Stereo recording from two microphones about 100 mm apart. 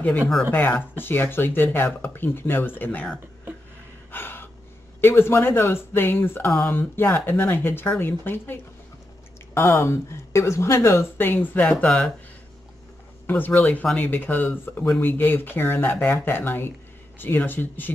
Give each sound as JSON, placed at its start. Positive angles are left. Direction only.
{"t": 0.0, "sound": "speech", "side_deg": 15}
{"t": 4.1, "sound": "gasp", "side_deg": 20}
{"t": 5.0, "sound": "speech", "side_deg": 25}
{"t": 13.3, "sound": "speech", "side_deg": 15}